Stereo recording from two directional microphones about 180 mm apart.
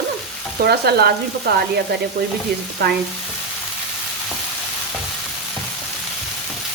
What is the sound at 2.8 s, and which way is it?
Speech, 65° right (ahead or behind).